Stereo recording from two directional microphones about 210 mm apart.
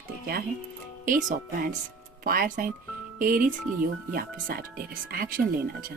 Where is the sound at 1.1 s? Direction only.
40° right (ahead or behind).